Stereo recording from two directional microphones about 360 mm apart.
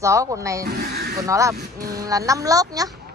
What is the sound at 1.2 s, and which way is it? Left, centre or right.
A woman's voice, centre.